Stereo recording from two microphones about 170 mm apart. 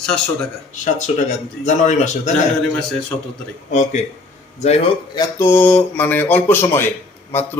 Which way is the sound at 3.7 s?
45° left (ahead or behind).